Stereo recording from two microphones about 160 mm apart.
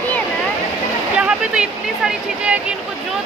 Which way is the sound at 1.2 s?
5° right (ahead or behind).